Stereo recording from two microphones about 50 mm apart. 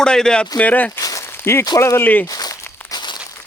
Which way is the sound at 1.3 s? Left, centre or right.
Left.